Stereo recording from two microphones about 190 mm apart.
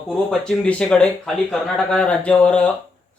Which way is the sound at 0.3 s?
5° left (ahead or behind).